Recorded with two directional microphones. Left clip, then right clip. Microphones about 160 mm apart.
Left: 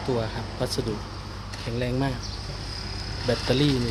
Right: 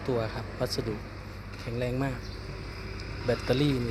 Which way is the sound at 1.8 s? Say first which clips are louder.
Left 3 dB; 15° left (ahead or behind).